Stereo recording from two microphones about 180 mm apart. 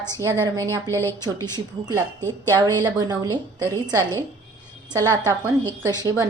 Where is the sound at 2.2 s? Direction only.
10° left (ahead or behind).